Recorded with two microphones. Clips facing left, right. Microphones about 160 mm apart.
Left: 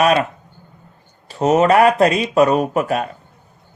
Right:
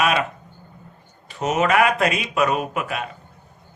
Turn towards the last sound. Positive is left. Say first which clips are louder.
# left 8 dB
turn(degrees=40)  # may be behind; listen again after turning